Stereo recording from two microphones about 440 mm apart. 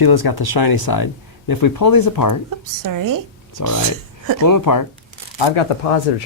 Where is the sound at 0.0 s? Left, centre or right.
Left.